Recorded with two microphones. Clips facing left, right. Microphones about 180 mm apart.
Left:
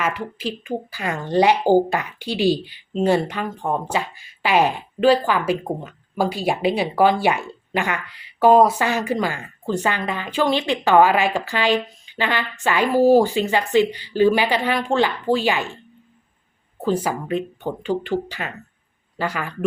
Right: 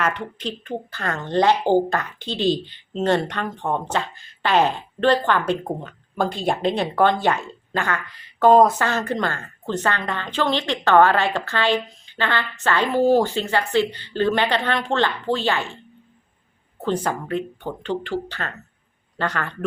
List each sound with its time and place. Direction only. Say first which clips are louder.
0.0 s a woman's voice: even; 5° left (ahead or behind)
16.8 s a woman's voice: left 2 dB; 5° left (ahead or behind)
17.2 s a woman's voice: left 2 dB; 15° left (ahead or behind)